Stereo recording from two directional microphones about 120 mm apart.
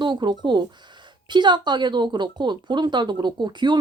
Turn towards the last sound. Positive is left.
turn(degrees=-40)  # may be behind; listen again after turning